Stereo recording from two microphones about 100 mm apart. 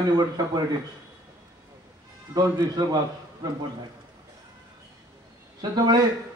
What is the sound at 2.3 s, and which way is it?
Speech, 40° right (ahead or behind).